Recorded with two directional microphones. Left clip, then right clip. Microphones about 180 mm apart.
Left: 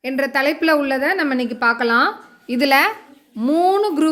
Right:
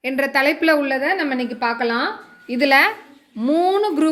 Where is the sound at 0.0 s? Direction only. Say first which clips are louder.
Right 1 dB; 5° left (ahead or behind); by 2.6 s 25° left (ahead or behind).